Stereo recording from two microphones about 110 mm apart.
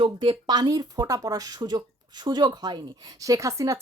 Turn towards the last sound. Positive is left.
turn(degrees=-30)  # may be behind; listen again after turning